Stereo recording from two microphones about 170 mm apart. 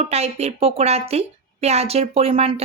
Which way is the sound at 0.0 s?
40° right (ahead or behind).